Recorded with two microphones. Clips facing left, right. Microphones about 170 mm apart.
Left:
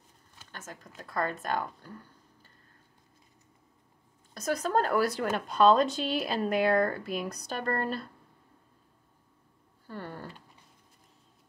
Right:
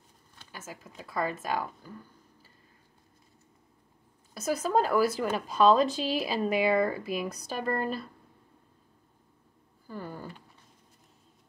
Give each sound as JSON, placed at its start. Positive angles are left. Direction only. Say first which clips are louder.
{"t": 0.5, "sound": "speech", "louder": "right 1 dB", "side_deg": -10}
{"t": 4.3, "sound": "speech", "louder": "right 1 dB", "side_deg": -5}
{"t": 9.8, "sound": "speech", "louder": "right 1 dB", "side_deg": 0}